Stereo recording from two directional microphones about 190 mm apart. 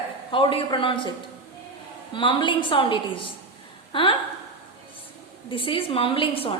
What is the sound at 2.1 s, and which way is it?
A woman's voice, 25° left (ahead or behind).